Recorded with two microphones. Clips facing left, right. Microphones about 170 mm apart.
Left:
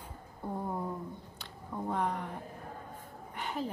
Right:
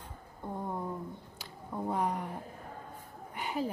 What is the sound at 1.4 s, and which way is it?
Speech, 10° right (ahead or behind).